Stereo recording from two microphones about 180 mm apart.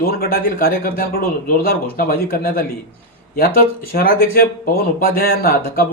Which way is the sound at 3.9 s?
55° left (ahead or behind).